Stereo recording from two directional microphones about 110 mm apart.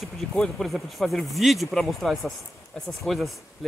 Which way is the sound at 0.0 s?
Centre (ahead or behind).